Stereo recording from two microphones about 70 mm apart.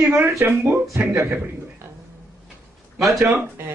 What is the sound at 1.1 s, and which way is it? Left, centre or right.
Speech, right.